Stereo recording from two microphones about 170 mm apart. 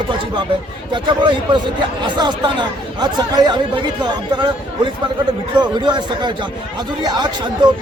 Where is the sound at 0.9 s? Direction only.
30° right (ahead or behind).